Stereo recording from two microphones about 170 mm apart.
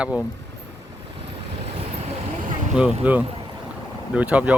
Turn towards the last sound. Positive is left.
turn(degrees=-10)  # may be behind; listen again after turning